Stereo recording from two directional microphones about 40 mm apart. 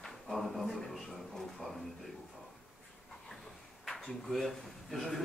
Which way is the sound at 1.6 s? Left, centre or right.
Left.